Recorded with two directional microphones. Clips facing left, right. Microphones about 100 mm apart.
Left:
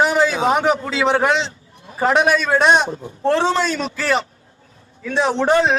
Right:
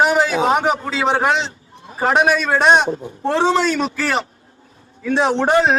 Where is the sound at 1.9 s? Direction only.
25° right (ahead or behind).